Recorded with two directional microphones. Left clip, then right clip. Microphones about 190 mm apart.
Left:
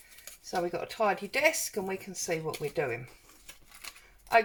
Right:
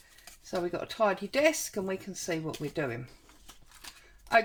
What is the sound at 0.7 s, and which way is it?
Speech, 50° right (ahead or behind).